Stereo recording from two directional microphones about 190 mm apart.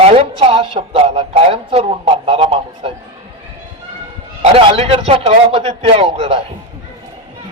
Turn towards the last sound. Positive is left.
turn(degrees=-30)  # may be behind; listen again after turning